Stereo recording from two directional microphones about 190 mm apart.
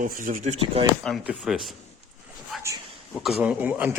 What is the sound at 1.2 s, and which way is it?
A man's voice, centre (ahead or behind).